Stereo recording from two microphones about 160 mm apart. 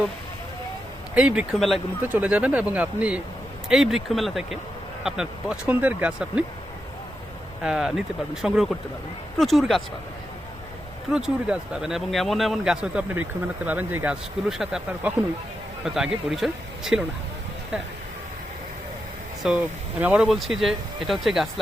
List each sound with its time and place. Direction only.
1.1 s speech: 5° right (ahead or behind)
2.0 s speech: 10° right (ahead or behind)
7.6 s speech: 5° right (ahead or behind)
11.1 s speech: 5° right (ahead or behind)
19.4 s speech: 5° right (ahead or behind)